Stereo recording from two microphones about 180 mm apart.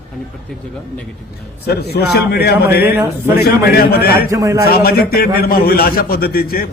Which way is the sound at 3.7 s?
60° left (ahead or behind).